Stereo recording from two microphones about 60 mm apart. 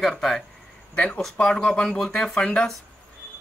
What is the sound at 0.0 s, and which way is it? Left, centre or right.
Speech, centre.